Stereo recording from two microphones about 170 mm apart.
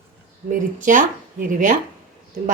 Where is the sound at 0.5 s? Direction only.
50° right (ahead or behind).